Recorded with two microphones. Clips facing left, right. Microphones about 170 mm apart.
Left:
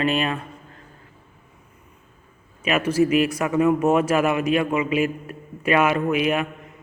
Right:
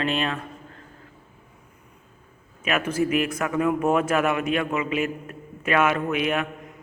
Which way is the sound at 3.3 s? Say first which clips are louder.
Left 4 dB; 10° left (ahead or behind).